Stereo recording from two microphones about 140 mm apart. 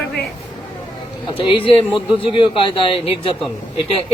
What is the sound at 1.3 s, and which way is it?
A man's voice, 40° left (ahead or behind).